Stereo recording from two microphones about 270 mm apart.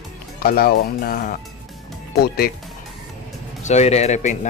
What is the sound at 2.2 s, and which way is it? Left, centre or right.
Speech, left.